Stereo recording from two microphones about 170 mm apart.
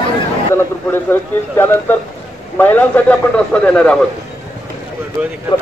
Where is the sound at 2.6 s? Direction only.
10° left (ahead or behind).